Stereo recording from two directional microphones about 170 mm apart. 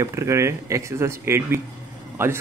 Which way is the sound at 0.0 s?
15° right (ahead or behind).